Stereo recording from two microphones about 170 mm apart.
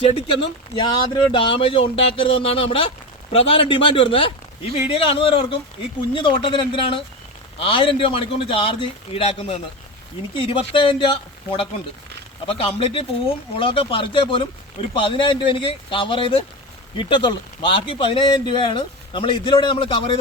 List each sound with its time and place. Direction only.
0.0 s a man's voice: 35° left (ahead or behind)
12.5 s a man's voice: 35° left (ahead or behind)